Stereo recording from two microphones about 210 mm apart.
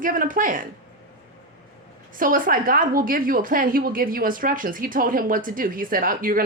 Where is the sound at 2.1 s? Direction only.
40° right (ahead or behind).